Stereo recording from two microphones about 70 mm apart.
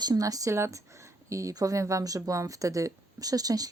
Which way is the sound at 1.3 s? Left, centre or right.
Right.